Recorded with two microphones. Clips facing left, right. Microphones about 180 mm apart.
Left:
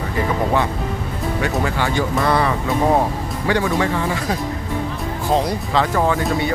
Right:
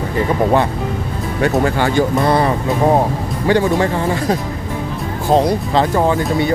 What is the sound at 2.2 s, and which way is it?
Speech, 35° right (ahead or behind).